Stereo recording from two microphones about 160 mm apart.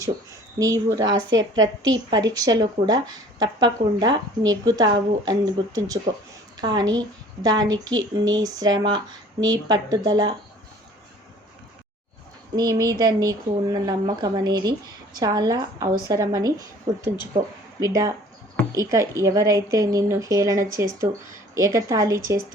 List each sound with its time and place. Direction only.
0.6 s speech: 20° right (ahead or behind)
12.5 s speech: 25° right (ahead or behind)